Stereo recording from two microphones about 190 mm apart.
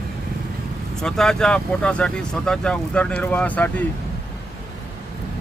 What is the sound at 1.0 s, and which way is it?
Speech, 5° left (ahead or behind).